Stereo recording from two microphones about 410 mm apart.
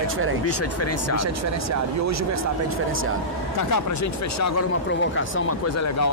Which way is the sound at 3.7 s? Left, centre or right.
Left.